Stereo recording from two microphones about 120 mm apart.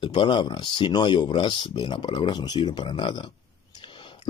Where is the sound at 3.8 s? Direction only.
45° left (ahead or behind).